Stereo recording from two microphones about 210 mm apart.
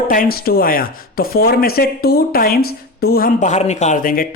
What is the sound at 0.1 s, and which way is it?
Speech, 45° left (ahead or behind).